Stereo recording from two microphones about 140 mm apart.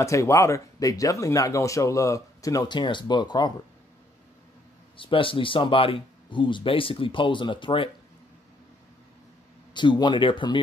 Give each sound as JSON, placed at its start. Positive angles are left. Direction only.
{"t": 0.0, "sound": "speech", "side_deg": 20}
{"t": 4.9, "sound": "speech", "side_deg": 40}
{"t": 9.8, "sound": "speech", "side_deg": 35}